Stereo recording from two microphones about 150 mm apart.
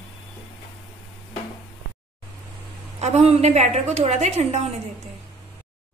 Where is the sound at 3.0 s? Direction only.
45° right (ahead or behind).